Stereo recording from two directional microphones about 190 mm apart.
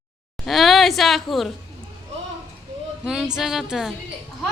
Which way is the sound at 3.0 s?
5° right (ahead or behind).